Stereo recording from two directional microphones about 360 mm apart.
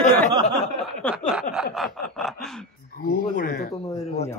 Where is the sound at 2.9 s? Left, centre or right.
Left.